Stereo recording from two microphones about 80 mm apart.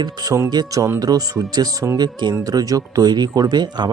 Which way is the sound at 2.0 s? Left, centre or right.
Right.